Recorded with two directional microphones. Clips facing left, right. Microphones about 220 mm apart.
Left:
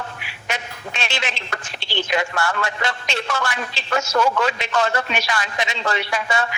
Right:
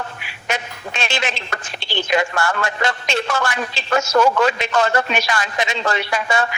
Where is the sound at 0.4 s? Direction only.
45° right (ahead or behind).